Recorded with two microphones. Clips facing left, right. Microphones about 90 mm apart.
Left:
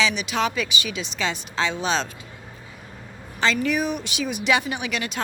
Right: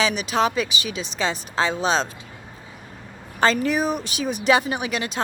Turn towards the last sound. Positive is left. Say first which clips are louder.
# right 2 dB
turn(degrees=-35)  # may be behind; listen again after turning